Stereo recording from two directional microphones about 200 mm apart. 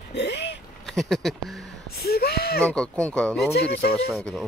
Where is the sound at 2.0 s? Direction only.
50° left (ahead or behind).